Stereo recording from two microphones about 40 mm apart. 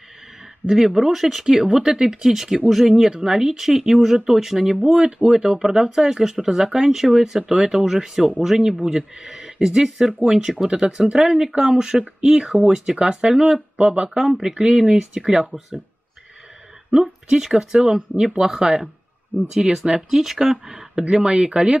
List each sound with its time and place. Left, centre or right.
0.7 s speech: centre
3.1 s speech: centre
3.3 s speech: centre
13.7 s speech: right
16.9 s speech: centre
18.1 s speech: right
19.5 s speech: centre